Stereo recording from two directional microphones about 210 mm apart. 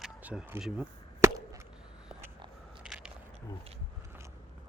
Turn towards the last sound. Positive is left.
turn(degrees=-5)  # may be behind; listen again after turning